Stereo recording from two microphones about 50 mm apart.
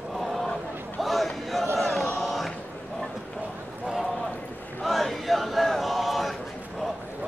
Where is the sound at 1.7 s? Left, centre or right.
Centre.